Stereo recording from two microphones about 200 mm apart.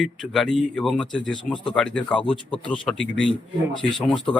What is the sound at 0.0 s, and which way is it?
A man's voice, 5° left (ahead or behind).